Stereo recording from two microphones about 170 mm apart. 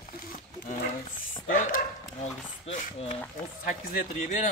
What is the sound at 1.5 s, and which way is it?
Dog, 50° left (ahead or behind).